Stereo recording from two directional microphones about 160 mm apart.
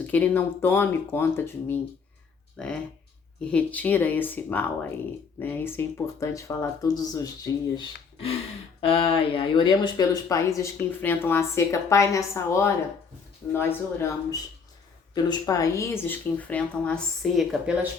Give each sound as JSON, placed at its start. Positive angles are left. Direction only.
{"t": 0.0, "sound": "speech", "side_deg": 10}
{"t": 8.8, "sound": "speech", "side_deg": 35}